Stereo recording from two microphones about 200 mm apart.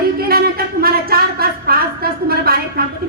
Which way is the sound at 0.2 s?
50° right (ahead or behind).